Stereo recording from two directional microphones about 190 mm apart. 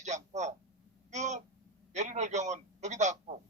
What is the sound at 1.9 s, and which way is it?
A man's voice, 40° right (ahead or behind).